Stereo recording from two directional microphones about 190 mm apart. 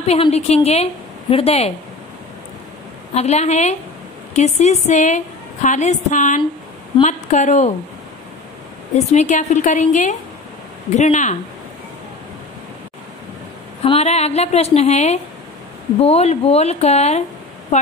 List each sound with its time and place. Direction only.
0.0 s a woman's voice: 35° left (ahead or behind)
3.2 s a woman's voice: 35° left (ahead or behind)
8.9 s a woman's voice: 40° left (ahead or behind)
13.8 s a woman's voice: 35° left (ahead or behind)